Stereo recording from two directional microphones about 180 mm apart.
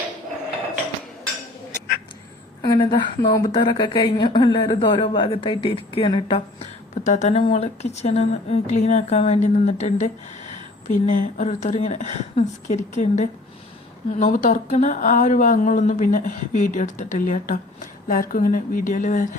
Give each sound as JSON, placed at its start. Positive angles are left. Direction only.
{"t": 2.6, "sound": "a woman's voice", "side_deg": 25}
{"t": 7.0, "sound": "speech", "side_deg": 40}